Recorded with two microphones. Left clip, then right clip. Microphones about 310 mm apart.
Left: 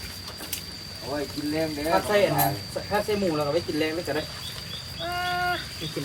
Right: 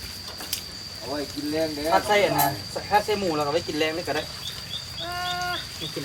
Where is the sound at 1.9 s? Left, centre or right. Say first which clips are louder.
Right 2 dB; centre.